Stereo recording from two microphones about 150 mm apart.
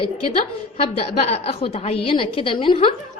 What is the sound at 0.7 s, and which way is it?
A woman's voice, 40° left (ahead or behind).